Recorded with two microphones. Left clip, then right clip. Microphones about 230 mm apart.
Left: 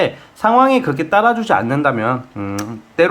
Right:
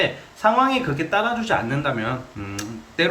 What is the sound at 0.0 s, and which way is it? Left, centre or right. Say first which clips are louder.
Speech: left 3 dB; left.